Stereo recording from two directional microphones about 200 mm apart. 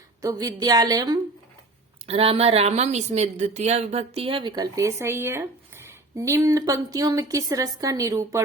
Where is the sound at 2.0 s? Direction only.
30° right (ahead or behind).